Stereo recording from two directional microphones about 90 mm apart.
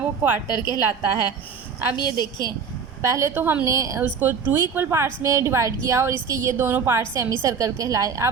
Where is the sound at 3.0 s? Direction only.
30° right (ahead or behind).